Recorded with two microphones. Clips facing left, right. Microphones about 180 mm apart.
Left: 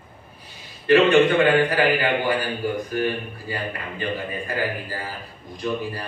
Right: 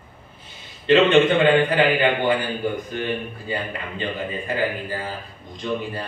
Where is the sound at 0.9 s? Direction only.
25° right (ahead or behind).